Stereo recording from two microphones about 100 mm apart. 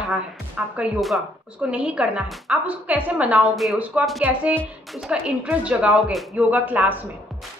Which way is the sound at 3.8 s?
15° right (ahead or behind).